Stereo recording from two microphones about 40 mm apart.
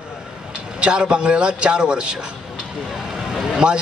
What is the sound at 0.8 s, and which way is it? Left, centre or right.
A man's voice, right.